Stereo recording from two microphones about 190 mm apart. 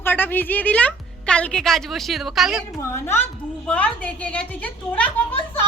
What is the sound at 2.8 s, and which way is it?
A woman's voice, 15° left (ahead or behind).